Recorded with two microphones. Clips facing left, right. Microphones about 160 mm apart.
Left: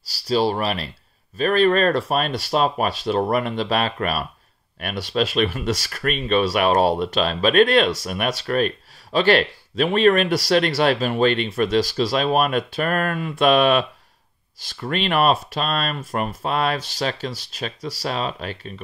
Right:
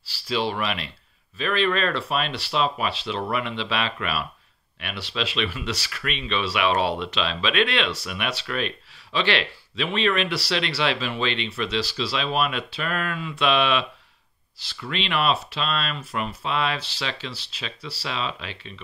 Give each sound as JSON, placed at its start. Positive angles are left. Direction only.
{"t": 0.0, "sound": "speech", "side_deg": 40}